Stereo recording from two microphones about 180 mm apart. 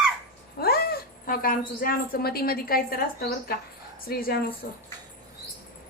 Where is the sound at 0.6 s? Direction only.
55° left (ahead or behind).